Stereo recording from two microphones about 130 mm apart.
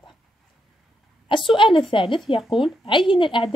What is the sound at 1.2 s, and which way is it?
Speech, 40° left (ahead or behind).